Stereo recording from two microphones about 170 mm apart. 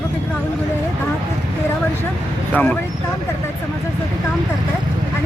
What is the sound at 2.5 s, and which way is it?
Speech, 10° left (ahead or behind).